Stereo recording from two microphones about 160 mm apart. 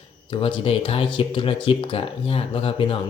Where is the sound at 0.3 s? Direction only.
35° left (ahead or behind).